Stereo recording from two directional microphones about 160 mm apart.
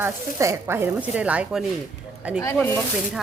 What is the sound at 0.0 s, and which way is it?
Speech, 15° right (ahead or behind).